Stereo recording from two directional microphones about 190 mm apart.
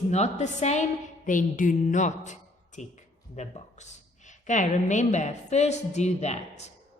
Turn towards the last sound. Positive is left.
turn(degrees=35)  # may be behind; listen again after turning